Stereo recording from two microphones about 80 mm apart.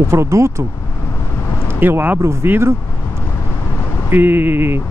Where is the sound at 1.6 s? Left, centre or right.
Right.